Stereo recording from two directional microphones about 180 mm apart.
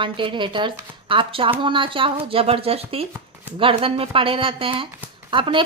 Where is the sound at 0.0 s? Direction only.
30° right (ahead or behind).